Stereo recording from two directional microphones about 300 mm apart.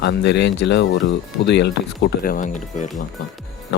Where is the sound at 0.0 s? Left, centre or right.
Left.